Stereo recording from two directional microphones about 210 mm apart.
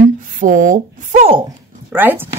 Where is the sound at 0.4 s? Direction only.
40° right (ahead or behind).